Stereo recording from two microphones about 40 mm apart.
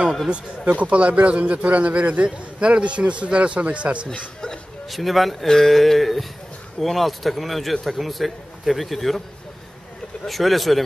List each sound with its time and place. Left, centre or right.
0.7 s a man's voice: right
4.8 s speech: centre
10.2 s speech: centre